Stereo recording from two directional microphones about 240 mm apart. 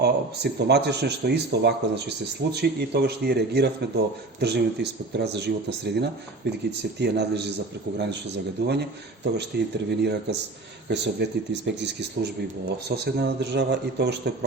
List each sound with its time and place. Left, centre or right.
0.0 s speech: right